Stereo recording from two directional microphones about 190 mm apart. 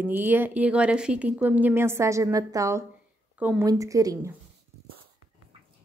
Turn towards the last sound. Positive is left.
turn(degrees=-15)  # may be behind; listen again after turning